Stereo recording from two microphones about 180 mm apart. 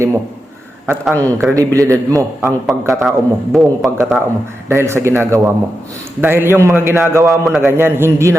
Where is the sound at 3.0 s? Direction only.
Centre (ahead or behind).